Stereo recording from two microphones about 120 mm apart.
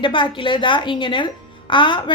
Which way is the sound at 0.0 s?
45° left (ahead or behind).